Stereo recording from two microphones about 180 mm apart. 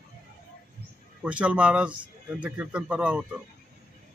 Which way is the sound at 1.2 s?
5° right (ahead or behind).